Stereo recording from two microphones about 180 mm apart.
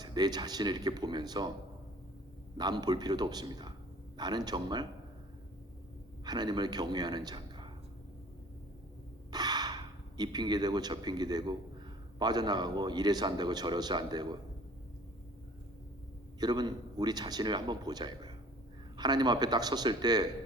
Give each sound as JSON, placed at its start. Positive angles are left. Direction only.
{"t": 0.0, "sound": "a man's voice", "side_deg": -25}
{"t": 2.6, "sound": "a man's voice", "side_deg": -25}
{"t": 6.2, "sound": "a man's voice", "side_deg": -25}
{"t": 9.3, "sound": "a man's voice", "side_deg": -25}
{"t": 16.4, "sound": "a man's voice", "side_deg": -25}